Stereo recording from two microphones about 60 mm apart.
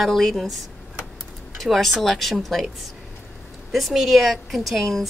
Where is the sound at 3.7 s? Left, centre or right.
Centre.